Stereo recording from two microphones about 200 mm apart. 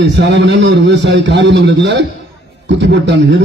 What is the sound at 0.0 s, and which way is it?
A man's voice, 60° right (ahead or behind).